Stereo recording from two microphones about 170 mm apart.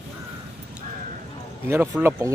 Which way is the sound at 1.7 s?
10° right (ahead or behind).